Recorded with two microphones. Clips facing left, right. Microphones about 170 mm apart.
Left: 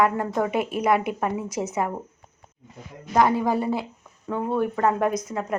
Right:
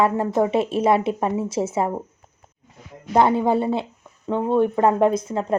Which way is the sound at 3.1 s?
25° right (ahead or behind).